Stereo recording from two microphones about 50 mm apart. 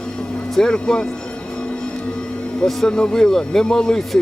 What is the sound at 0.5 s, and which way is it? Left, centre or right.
Speech, centre.